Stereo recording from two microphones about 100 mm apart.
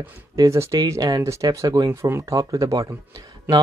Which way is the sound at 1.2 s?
30° right (ahead or behind).